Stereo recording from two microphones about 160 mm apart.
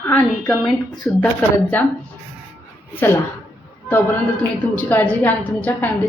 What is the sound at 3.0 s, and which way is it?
Speech, 15° left (ahead or behind).